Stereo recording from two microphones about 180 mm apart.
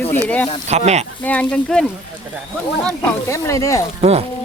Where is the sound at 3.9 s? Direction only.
35° right (ahead or behind).